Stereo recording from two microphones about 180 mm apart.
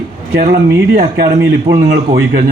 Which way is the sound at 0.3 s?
55° right (ahead or behind).